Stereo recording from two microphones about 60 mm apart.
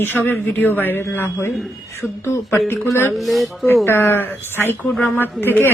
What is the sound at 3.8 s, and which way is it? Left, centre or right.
Speech, left.